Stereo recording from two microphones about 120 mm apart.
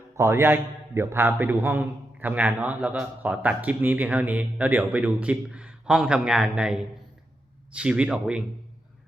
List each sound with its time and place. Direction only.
0.2 s speech: 20° right (ahead or behind)